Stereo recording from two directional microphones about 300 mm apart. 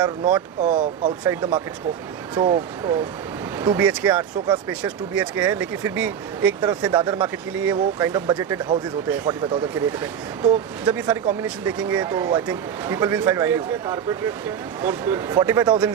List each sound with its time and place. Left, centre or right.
0.3 s speech: right
1.2 s speech: centre